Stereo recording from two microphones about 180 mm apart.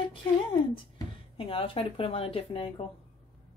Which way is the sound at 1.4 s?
30° left (ahead or behind).